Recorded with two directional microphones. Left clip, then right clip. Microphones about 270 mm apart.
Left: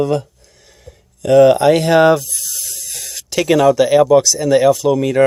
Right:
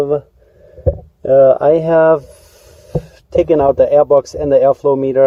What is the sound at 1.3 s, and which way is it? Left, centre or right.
Speech, left.